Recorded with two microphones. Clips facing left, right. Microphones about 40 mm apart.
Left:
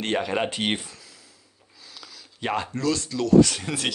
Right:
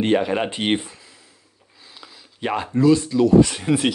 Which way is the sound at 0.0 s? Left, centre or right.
Centre.